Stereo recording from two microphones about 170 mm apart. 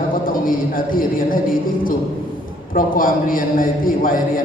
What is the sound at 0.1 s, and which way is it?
A man's voice, 55° left (ahead or behind).